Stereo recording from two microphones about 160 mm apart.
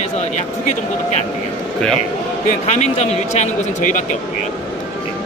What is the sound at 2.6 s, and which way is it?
A man's voice, 45° left (ahead or behind).